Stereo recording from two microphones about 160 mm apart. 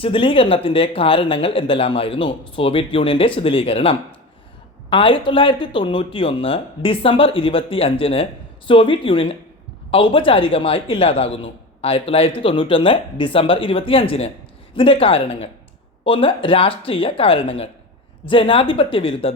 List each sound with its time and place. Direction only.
0.0 s speech: 35° left (ahead or behind)